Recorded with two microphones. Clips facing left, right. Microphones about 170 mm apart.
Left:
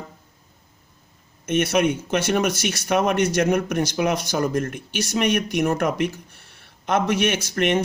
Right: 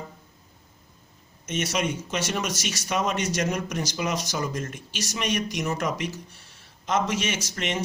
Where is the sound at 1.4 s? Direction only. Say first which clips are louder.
Left 8 dB; 55° left (ahead or behind).